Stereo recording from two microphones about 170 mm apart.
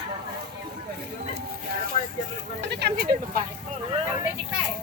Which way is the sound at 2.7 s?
70° right (ahead or behind).